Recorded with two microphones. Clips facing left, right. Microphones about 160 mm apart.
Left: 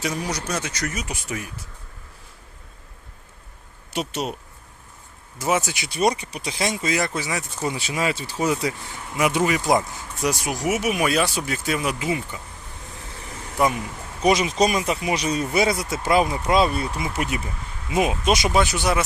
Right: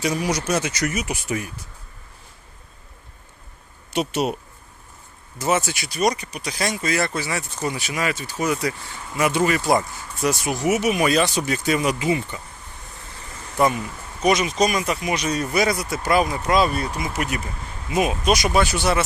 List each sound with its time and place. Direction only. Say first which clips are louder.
0.0 s speech: right 4 dB; 5° right (ahead or behind)
3.9 s speech: right 4 dB; 5° right (ahead or behind)
5.4 s speech: right 1 dB; 10° left (ahead or behind)
5.9 s speech: even; 25° left (ahead or behind)
9.1 s speech: right 1 dB; 10° left (ahead or behind)
14.2 s speech: even; 25° left (ahead or behind)